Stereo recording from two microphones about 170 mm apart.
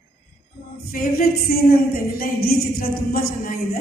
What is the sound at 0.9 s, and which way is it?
Speech, 60° left (ahead or behind).